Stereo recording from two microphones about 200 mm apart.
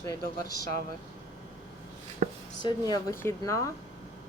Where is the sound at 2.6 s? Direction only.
20° left (ahead or behind).